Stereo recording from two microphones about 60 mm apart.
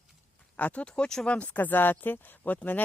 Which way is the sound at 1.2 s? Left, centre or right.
Left.